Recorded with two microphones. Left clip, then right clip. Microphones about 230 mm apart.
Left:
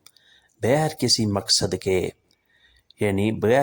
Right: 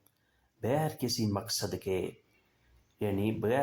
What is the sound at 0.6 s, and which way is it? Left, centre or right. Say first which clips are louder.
Speech: left 10 dB; left.